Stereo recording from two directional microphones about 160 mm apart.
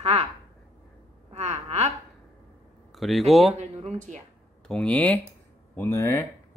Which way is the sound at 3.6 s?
45° right (ahead or behind).